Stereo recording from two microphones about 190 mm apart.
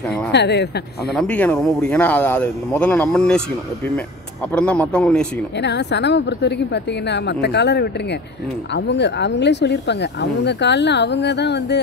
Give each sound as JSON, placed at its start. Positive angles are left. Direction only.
{"t": 0.3, "sound": "speech", "side_deg": 65}
{"t": 1.1, "sound": "a man's voice", "side_deg": 5}
{"t": 5.6, "sound": "speech", "side_deg": 65}